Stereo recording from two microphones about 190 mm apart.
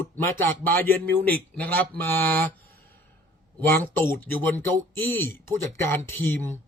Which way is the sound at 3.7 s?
10° left (ahead or behind).